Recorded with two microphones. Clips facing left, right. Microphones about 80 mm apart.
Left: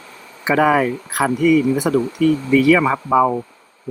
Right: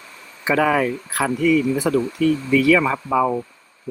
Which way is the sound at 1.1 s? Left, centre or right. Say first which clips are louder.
Left 3 dB; left.